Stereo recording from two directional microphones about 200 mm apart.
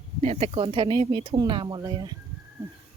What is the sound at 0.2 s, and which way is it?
Speech, 30° right (ahead or behind).